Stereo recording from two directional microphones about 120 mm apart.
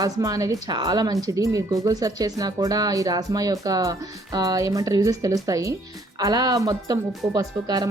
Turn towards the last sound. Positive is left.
turn(degrees=-35)  # may be behind; listen again after turning